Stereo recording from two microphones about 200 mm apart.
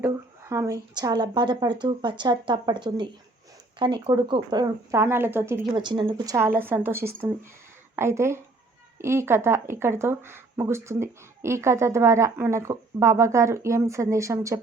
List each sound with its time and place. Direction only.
0.0 s speech: 15° right (ahead or behind)
5.7 s speech: 25° right (ahead or behind)